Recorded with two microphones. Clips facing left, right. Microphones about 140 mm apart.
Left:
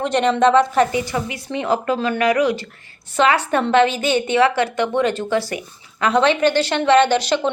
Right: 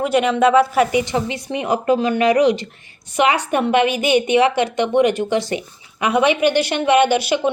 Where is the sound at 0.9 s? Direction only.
20° right (ahead or behind).